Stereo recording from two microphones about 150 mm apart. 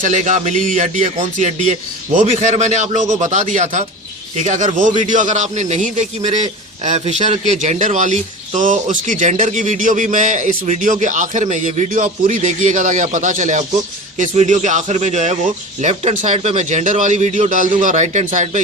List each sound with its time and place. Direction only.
0.0 s a man's voice: 55° right (ahead or behind)